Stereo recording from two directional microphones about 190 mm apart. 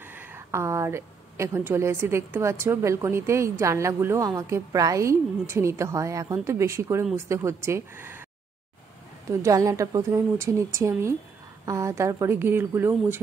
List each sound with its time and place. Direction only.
0.1 s a woman's voice: 10° right (ahead or behind)
9.4 s a woman's voice: 15° right (ahead or behind)